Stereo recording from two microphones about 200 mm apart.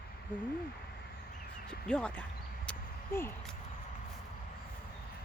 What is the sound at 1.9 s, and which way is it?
Speech, 5° left (ahead or behind).